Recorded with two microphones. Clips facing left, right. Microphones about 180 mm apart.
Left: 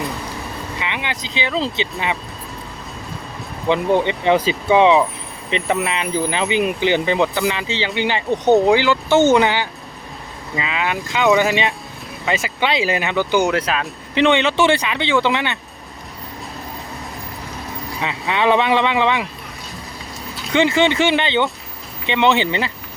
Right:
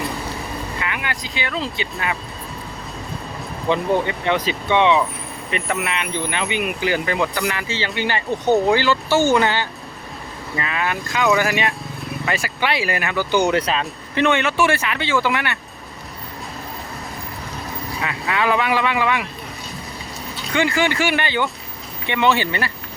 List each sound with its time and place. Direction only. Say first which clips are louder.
1.1 s speech: left 4 dB; 25° left (ahead or behind)
3.7 s speech: left 2 dB; 15° left (ahead or behind)
4.3 s speech: left 5 dB; 30° left (ahead or behind)
13.4 s speech: even; centre (ahead or behind)
14.2 s speech: left 3 dB; 20° left (ahead or behind)
18.0 s speech: left 3 dB; 25° left (ahead or behind)
20.5 s speech: left 4 dB; 20° left (ahead or behind)